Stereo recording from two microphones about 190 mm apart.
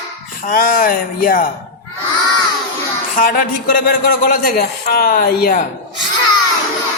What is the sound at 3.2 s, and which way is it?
Speech, 50° left (ahead or behind).